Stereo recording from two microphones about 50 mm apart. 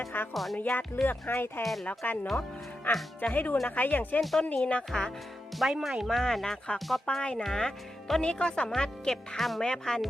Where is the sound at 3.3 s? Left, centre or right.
Left.